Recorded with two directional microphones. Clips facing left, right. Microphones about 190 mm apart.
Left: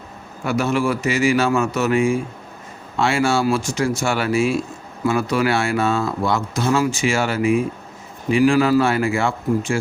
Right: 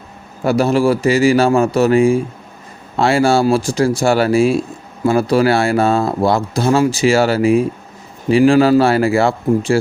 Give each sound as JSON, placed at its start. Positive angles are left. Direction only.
{"t": 0.4, "sound": "speech", "side_deg": -35}